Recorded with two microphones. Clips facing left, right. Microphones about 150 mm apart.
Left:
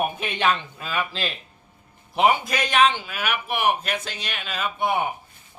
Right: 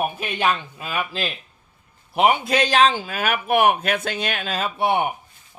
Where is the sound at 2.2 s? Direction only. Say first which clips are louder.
Right 2 dB; 20° right (ahead or behind).